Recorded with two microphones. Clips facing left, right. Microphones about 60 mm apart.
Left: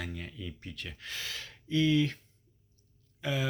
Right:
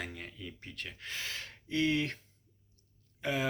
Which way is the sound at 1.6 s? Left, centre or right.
Right.